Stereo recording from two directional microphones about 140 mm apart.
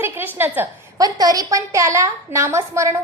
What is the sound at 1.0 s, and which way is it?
A woman's voice, 25° right (ahead or behind).